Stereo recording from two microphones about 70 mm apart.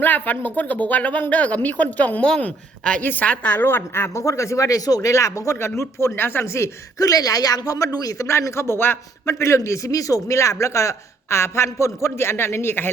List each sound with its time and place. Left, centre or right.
0.0 s speech: left
4.1 s speech: left
7.0 s speech: left
8.3 s speech: left
9.2 s speech: left